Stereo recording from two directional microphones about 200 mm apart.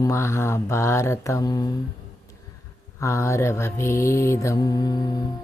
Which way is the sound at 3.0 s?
15° left (ahead or behind).